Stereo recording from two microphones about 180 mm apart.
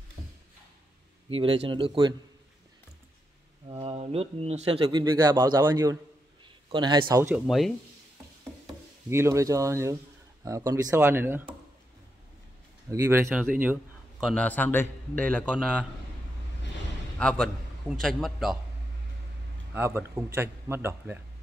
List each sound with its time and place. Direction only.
1.3 s speech: 30° right (ahead or behind)
3.6 s a man's voice: 30° right (ahead or behind); by 7.4 s 15° right (ahead or behind)
7.4 s a man's voice: centre (ahead or behind)
8.6 s speech: 15° right (ahead or behind)
12.9 s speech: 15° right (ahead or behind)
14.2 s a man's voice: 5° left (ahead or behind)
17.2 s a man's voice: 5° left (ahead or behind)
19.7 s speech: 15° right (ahead or behind)